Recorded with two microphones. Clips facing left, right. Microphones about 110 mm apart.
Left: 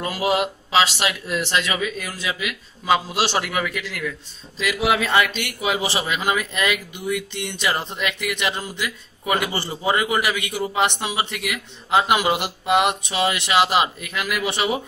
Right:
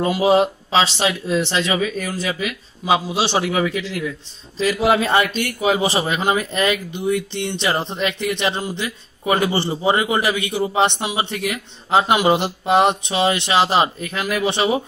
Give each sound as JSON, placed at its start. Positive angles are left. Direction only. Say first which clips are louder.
{"t": 0.0, "sound": "speech", "louder": "right 6 dB", "side_deg": -30}
{"t": 1.8, "sound": "a man's voice", "louder": "right 5 dB", "side_deg": -40}
{"t": 2.8, "sound": "a man's voice", "louder": "right 1 dB", "side_deg": -20}